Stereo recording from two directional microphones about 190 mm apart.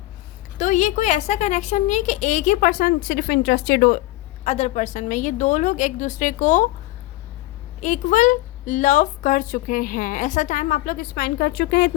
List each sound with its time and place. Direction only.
0.6 s a woman's voice: 40° left (ahead or behind)
4.4 s a woman's voice: 35° left (ahead or behind)
7.8 s a woman's voice: 40° left (ahead or behind); by 11.9 s 55° left (ahead or behind)